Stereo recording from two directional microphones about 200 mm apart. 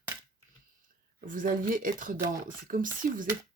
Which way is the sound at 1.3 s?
45° right (ahead or behind).